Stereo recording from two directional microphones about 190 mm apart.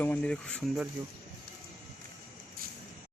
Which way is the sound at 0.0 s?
5° left (ahead or behind).